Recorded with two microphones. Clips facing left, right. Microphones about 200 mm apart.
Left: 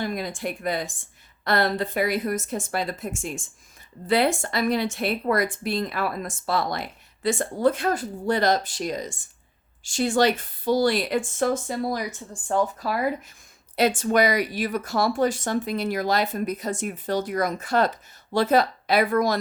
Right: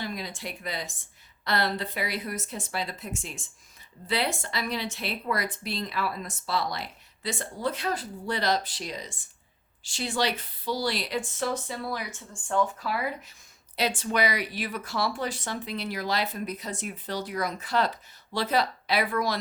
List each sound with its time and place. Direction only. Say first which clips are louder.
0.0 s speech: left 7 dB; 50° left (ahead or behind)